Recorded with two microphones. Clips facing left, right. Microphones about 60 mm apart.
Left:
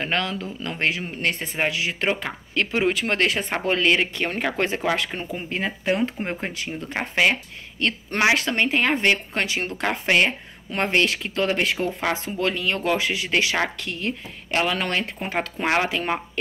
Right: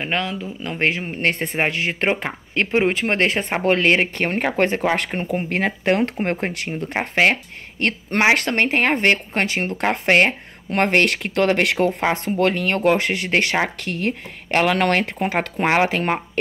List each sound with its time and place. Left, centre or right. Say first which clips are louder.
0.0 s speech: right 1 dB; centre
0.7 s speech: right 4 dB; right
4.9 s speech: right 5 dB; right
7.0 s speech: right 4 dB; right
8.4 s speech: right 3 dB; right
12.1 s speech: right 5 dB; right
13.7 s speech: right 4 dB; right
15.6 s speech: right 5 dB; right
15.9 s speech: right 4 dB; right